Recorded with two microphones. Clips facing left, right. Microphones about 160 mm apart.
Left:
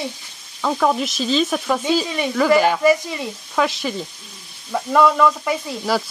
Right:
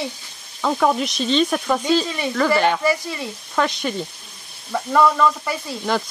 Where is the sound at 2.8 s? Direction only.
20° left (ahead or behind).